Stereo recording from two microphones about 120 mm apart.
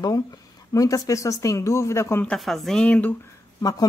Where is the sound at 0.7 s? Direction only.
30° left (ahead or behind).